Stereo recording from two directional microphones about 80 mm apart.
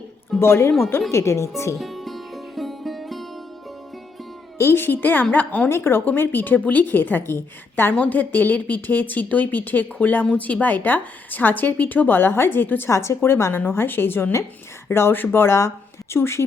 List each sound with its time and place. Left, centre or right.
0.3 s speech: left
1.8 s music: centre
4.5 s a woman's voice: left
12.9 s a woman's voice: left